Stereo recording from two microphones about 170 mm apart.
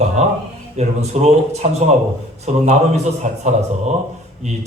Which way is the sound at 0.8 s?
40° right (ahead or behind).